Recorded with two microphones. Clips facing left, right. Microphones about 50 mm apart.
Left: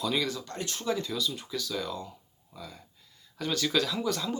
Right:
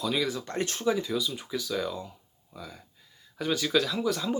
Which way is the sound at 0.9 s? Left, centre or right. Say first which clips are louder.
Right 2 dB; centre.